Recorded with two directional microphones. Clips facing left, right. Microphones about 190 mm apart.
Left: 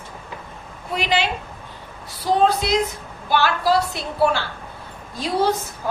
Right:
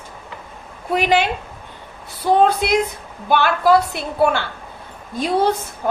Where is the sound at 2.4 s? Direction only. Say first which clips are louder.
Right 1 dB; 55° right (ahead or behind).